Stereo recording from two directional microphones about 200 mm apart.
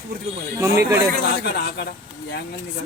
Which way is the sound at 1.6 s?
55° left (ahead or behind).